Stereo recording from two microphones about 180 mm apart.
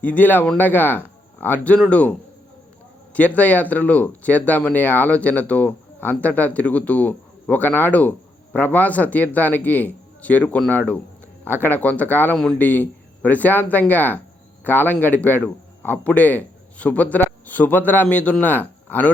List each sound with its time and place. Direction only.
0.0 s speech: 10° left (ahead or behind)